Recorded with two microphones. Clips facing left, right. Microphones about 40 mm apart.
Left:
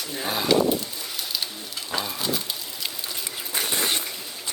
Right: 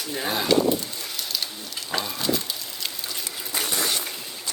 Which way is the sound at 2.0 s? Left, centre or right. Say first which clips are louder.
Right 2 dB; centre.